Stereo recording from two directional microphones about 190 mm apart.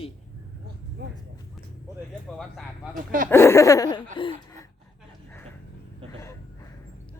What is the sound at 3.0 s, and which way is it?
Speech, 45° right (ahead or behind).